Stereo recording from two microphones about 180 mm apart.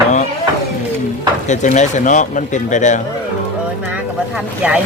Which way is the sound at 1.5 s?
40° left (ahead or behind).